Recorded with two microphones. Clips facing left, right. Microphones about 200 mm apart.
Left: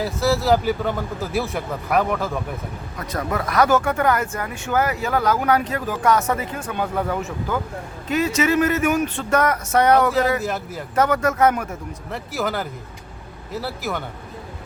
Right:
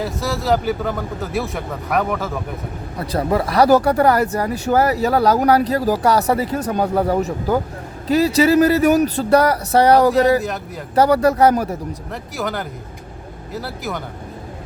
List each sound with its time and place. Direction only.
0.0 s a man's voice: centre (ahead or behind)
3.0 s speech: 30° right (ahead or behind)
12.1 s a man's voice: centre (ahead or behind)